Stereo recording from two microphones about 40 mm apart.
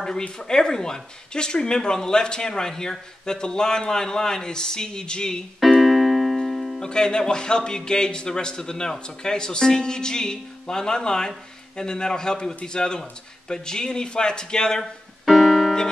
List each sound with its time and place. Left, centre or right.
0.4 s speech: centre
5.6 s keyboard: centre
6.8 s speech: centre
15.3 s music: centre